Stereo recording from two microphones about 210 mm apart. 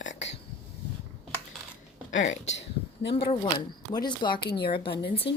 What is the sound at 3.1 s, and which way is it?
A woman's voice, 25° left (ahead or behind).